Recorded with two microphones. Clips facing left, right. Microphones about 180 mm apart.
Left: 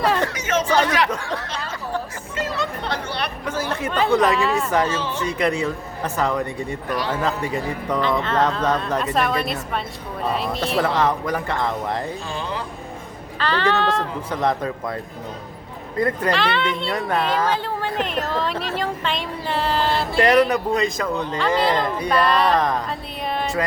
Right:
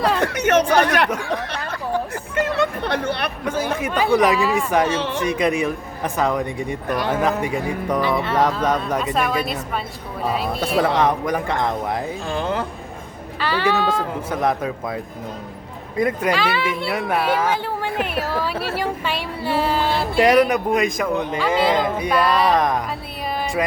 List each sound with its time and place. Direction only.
0.3 s speech: 65° right (ahead or behind)
1.1 s speech: 15° right (ahead or behind)
1.5 s chatter: 60° right (ahead or behind)
2.3 s a sound: 60° right (ahead or behind)
3.5 s a woman's voice: 10° right (ahead or behind)
4.7 s speech: 15° right (ahead or behind)
4.9 s speech: 65° right (ahead or behind)
5.2 s a woman's voice: 15° right (ahead or behind); by 10.8 s centre (ahead or behind)
11.0 s speech: 15° right (ahead or behind)
12.3 s speech: 55° right (ahead or behind)
13.4 s speech: 10° right (ahead or behind)
23.3 s music: 10° right (ahead or behind)